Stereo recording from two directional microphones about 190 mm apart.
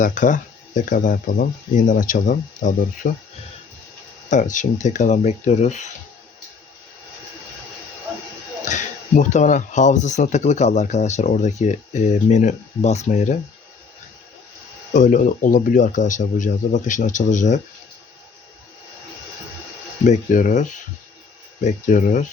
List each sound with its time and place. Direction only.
0.0 s speech: 45° left (ahead or behind)
4.3 s speech: 40° left (ahead or behind)
8.6 s speech: 40° left (ahead or behind)
14.9 s speech: 40° left (ahead or behind)
20.1 s speech: 40° left (ahead or behind)